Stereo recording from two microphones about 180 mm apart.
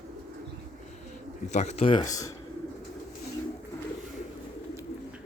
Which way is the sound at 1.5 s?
35° left (ahead or behind).